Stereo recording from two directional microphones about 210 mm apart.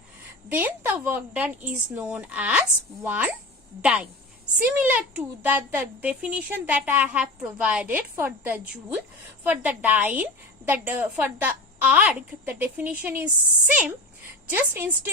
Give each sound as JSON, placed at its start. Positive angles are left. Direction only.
{"t": 0.4, "sound": "a woman's voice", "side_deg": -10}